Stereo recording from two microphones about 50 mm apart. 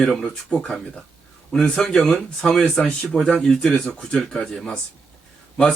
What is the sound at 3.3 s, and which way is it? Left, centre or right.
Speech, centre.